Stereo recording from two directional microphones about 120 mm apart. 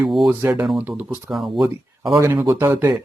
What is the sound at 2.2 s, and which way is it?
Speech, 30° right (ahead or behind).